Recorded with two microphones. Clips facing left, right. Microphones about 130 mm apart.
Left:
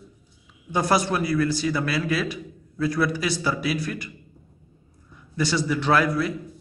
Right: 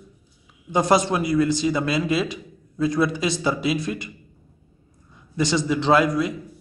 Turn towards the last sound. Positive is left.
turn(degrees=-20)  # may be behind; listen again after turning